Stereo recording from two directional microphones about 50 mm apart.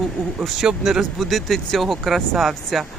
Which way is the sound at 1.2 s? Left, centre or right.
Centre.